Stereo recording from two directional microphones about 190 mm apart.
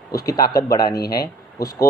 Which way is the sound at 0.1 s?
20° left (ahead or behind).